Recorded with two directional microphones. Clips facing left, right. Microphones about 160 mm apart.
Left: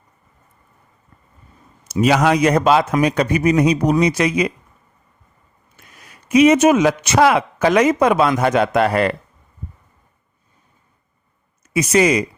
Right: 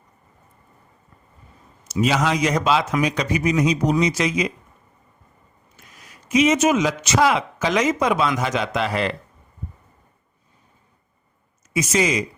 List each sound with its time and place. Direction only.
1.9 s a man's voice: 60° left (ahead or behind)
5.7 s a man's voice: 60° left (ahead or behind)
11.7 s a man's voice: 60° left (ahead or behind)